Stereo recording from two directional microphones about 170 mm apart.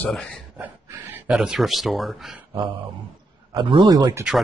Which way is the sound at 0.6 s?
10° right (ahead or behind).